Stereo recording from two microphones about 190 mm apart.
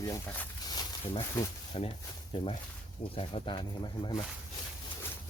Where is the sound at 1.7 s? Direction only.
30° left (ahead or behind).